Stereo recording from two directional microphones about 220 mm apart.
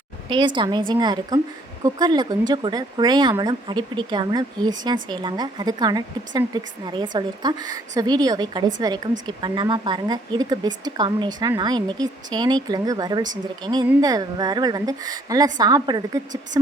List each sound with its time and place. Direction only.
0.3 s a woman's voice: 20° right (ahead or behind)